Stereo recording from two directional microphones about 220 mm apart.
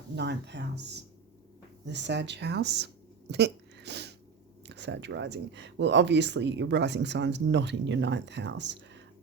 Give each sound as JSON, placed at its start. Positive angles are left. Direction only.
{"t": 0.2, "sound": "speech", "side_deg": -50}